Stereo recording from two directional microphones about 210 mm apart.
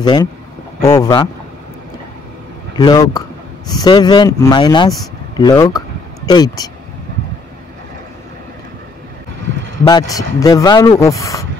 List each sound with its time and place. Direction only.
0.0 s speech: 20° left (ahead or behind)
2.7 s a man's voice: 20° left (ahead or behind)
9.8 s speech: 15° left (ahead or behind)